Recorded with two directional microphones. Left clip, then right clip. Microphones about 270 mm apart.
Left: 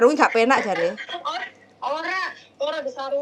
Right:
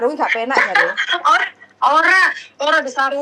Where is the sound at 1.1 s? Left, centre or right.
Right.